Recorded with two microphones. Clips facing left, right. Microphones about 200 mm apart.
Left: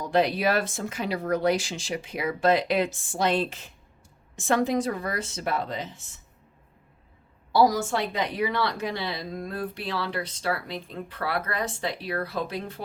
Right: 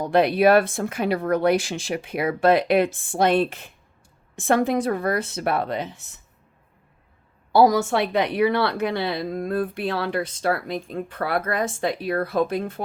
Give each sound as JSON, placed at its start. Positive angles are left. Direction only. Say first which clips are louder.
{"t": 0.0, "sound": "speech", "louder": "right 6 dB", "side_deg": -60}
{"t": 7.5, "sound": "a woman's voice", "louder": "right 5 dB", "side_deg": -60}